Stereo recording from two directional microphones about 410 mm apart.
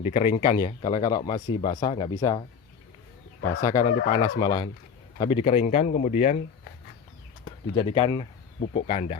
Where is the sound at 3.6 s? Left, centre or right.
Centre.